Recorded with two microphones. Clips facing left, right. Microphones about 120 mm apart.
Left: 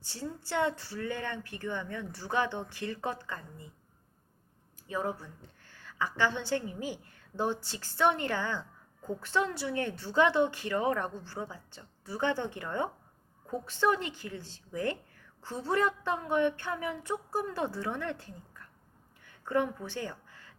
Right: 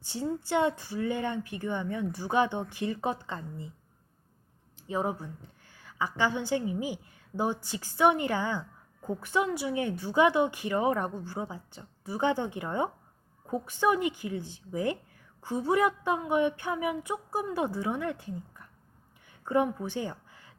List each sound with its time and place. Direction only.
0.0 s a woman's voice: 20° right (ahead or behind)
4.9 s a woman's voice: 20° right (ahead or behind)
19.2 s a sound: 15° right (ahead or behind)